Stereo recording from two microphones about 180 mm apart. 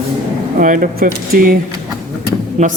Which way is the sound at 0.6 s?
50° right (ahead or behind).